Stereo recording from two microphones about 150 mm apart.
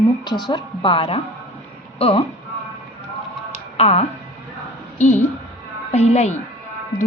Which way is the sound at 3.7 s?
45° left (ahead or behind).